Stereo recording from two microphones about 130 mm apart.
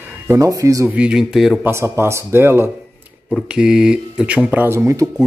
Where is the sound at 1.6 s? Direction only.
20° right (ahead or behind).